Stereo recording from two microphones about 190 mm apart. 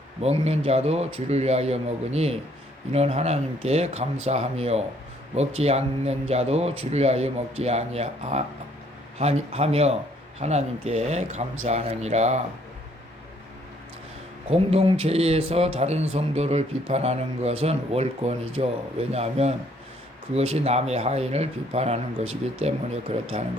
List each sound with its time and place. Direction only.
0.2 s speech: 35° right (ahead or behind)
14.5 s speech: 35° right (ahead or behind)
23.1 s speech: 30° right (ahead or behind)